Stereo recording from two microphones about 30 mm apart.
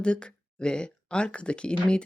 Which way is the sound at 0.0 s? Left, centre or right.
Left.